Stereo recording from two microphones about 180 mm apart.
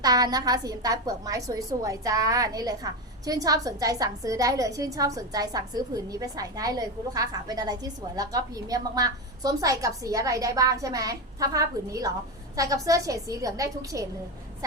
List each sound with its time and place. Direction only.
0.0 s a woman's voice: 20° right (ahead or behind)